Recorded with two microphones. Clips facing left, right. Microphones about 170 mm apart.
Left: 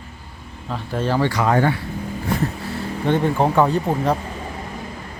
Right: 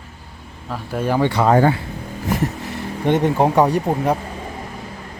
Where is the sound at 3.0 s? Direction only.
20° right (ahead or behind).